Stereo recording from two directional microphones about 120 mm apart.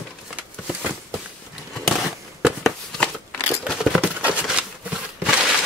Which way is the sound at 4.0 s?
10° right (ahead or behind).